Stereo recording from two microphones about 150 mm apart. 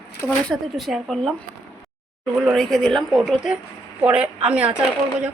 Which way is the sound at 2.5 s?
Centre (ahead or behind).